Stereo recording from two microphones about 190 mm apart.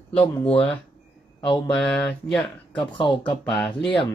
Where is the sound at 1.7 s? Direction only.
Centre (ahead or behind).